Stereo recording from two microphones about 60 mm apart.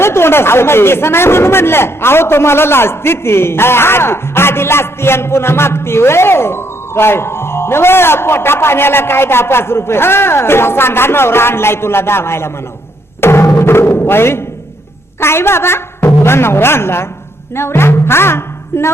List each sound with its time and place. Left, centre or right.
0.0 s speech: left
13.2 s music: left
15.2 s speech: left